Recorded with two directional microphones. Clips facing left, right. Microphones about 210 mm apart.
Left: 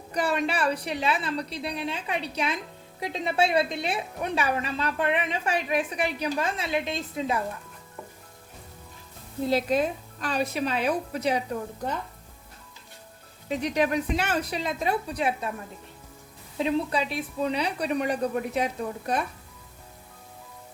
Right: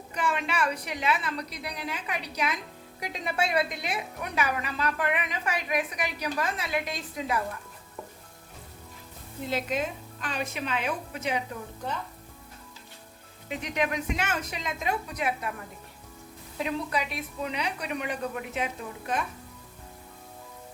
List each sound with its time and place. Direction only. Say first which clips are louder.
0.1 s a woman's voice: left 4 dB; 35° left (ahead or behind)
9.4 s speech: left 6 dB; 35° left (ahead or behind)
13.5 s speech: left 5 dB; 35° left (ahead or behind)
16.6 s speech: left 5 dB; 30° left (ahead or behind)